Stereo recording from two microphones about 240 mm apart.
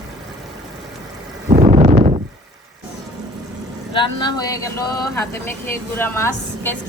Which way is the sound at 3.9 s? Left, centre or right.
Left.